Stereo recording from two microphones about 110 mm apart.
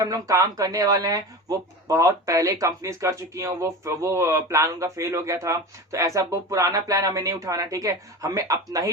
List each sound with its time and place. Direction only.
0.0 s speech: 30° right (ahead or behind)